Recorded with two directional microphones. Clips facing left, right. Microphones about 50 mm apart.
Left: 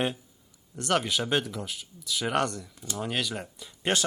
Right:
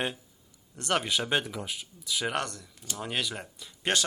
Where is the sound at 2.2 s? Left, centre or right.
Centre.